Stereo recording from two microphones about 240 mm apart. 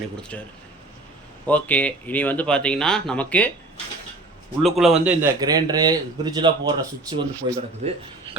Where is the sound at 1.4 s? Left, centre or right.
Centre.